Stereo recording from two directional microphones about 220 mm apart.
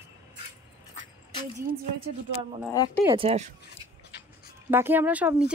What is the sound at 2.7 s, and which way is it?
Speech, 10° left (ahead or behind).